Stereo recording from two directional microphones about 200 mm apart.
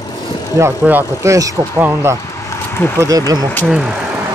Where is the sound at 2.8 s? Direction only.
10° left (ahead or behind).